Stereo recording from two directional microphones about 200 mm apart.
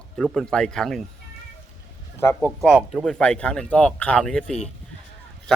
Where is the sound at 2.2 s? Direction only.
10° left (ahead or behind).